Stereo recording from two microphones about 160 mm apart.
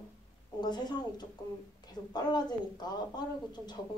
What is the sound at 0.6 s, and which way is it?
A woman's voice, 25° left (ahead or behind).